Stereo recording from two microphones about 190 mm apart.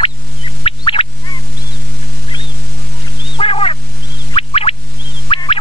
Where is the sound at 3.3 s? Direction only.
30° left (ahead or behind).